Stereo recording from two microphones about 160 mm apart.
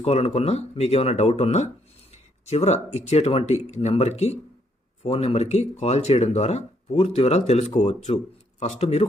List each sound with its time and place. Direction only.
0.0 s speech: 40° left (ahead or behind)